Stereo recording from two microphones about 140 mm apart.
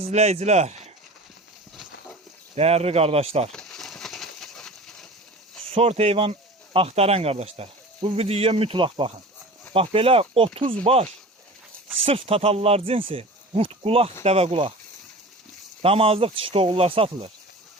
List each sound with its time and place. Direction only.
0.0 s speech: 50° right (ahead or behind)
1.7 s a sound: centre (ahead or behind)
2.6 s speech: 50° right (ahead or behind)
3.5 s a sound: 5° left (ahead or behind)
5.7 s speech: 45° right (ahead or behind)
15.8 s speech: 45° right (ahead or behind)